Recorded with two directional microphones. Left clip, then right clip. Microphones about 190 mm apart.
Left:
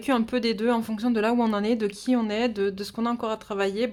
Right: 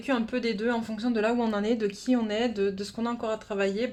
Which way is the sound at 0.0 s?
45° left (ahead or behind).